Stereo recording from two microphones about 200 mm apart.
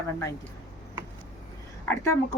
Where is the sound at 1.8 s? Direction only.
10° left (ahead or behind).